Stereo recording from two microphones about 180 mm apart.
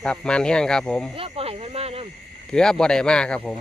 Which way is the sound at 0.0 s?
5° left (ahead or behind).